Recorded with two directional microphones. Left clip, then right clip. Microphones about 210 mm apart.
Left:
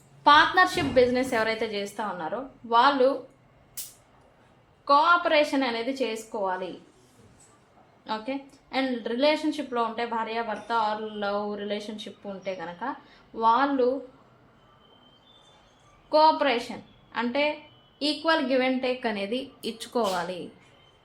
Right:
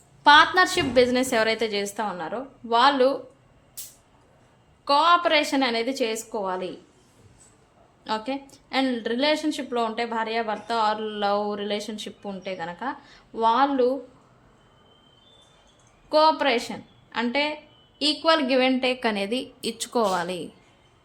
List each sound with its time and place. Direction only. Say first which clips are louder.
0.3 s a woman's voice: right 2 dB; 25° right (ahead or behind)
4.9 s a woman's voice: right 1 dB; 35° right (ahead or behind)
8.0 s a woman's voice: right 3 dB; 30° right (ahead or behind)
16.0 s a woman's voice: right 1 dB; 30° right (ahead or behind)